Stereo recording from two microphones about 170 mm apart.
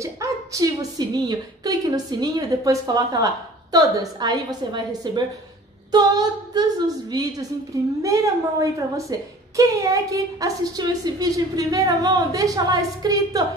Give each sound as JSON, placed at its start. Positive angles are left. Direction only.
{"t": 0.0, "sound": "a woman's voice", "side_deg": -20}